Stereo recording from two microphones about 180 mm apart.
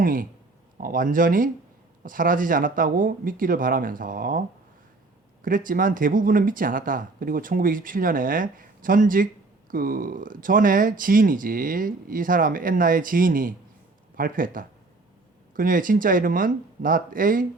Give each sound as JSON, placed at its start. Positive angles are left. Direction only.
{"t": 0.0, "sound": "speech", "side_deg": -50}